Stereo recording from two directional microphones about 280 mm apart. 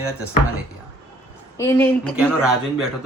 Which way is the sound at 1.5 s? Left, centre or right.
Centre.